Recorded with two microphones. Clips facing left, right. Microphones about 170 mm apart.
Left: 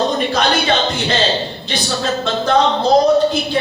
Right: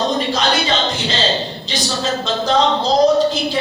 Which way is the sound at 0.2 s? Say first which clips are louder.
Left 2 dB; 60° left (ahead or behind).